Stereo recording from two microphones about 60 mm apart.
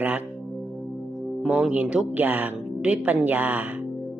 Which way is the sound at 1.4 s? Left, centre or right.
Centre.